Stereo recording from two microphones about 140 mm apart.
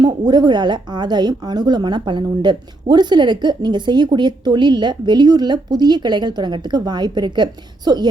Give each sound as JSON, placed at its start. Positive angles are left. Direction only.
{"t": 0.0, "sound": "a woman's voice", "side_deg": -30}